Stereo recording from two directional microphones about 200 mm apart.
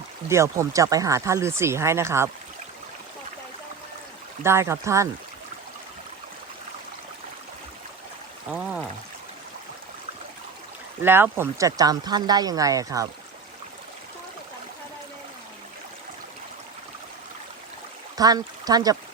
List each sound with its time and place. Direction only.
0.3 s speech: 15° right (ahead or behind)
4.4 s speech: 15° right (ahead or behind)
8.5 s speech: 5° right (ahead or behind)
11.0 s speech: 10° right (ahead or behind)
18.2 s speech: 20° right (ahead or behind)